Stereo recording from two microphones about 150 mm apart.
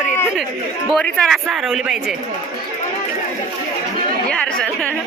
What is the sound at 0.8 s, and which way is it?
Speech, 5° left (ahead or behind).